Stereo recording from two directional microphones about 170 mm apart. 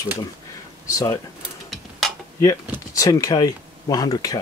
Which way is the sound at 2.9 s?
20° left (ahead or behind).